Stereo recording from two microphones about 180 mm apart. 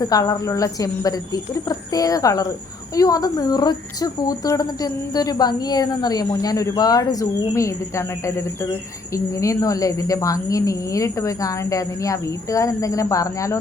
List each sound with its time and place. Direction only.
0.0 s a woman's voice: 20° left (ahead or behind)